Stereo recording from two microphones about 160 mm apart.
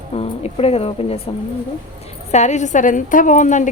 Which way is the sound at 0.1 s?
40° left (ahead or behind).